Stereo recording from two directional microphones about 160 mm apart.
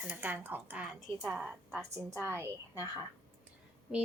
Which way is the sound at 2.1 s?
15° right (ahead or behind).